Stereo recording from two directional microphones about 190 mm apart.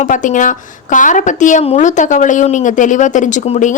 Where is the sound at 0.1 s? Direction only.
45° left (ahead or behind).